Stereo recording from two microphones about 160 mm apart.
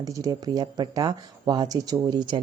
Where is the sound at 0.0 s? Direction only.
20° right (ahead or behind).